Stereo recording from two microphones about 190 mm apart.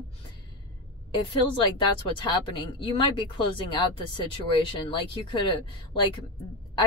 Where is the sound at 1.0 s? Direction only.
25° left (ahead or behind).